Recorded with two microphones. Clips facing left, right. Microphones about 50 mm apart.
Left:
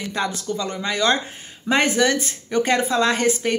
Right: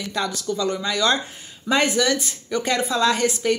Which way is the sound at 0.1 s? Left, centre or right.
Left.